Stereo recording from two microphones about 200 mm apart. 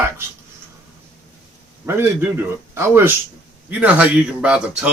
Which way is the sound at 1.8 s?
10° right (ahead or behind).